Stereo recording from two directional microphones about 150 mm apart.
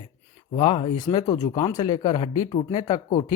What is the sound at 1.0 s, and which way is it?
Speech, 25° left (ahead or behind).